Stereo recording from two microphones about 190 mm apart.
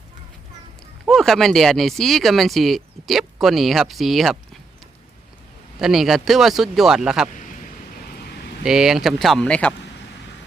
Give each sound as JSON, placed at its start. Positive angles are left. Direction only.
{"t": 1.0, "sound": "speech", "side_deg": 0}
{"t": 5.8, "sound": "speech", "side_deg": 0}
{"t": 8.1, "sound": "a sound", "side_deg": 55}
{"t": 8.6, "sound": "speech", "side_deg": -5}